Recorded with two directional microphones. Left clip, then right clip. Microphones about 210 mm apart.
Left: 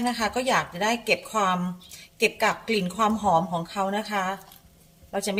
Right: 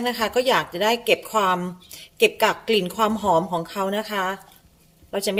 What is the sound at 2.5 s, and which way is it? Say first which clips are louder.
A woman's voice: right 4 dB; 40° right (ahead or behind).